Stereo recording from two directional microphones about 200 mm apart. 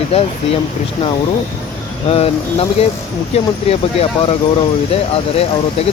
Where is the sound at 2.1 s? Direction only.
30° left (ahead or behind).